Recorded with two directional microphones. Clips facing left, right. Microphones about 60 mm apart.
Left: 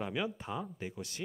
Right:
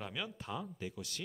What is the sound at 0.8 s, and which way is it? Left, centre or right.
Speech, left.